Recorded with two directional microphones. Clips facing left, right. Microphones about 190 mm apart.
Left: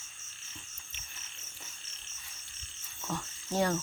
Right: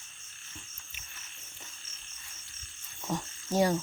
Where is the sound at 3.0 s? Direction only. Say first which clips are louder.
Right 3 dB; 15° right (ahead or behind).